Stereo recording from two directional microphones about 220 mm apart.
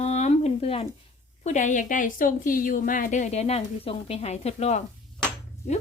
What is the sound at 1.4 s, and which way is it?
A woman's voice, 30° left (ahead or behind).